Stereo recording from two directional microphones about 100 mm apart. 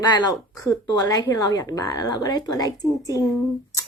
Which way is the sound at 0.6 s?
35° left (ahead or behind).